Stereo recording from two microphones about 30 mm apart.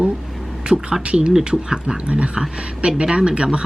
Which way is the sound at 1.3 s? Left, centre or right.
Centre.